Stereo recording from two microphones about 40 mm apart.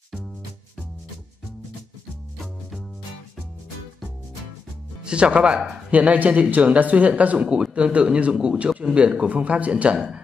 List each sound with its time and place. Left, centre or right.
5.0 s speech: right
5.9 s a man's voice: right
9.3 s speech: right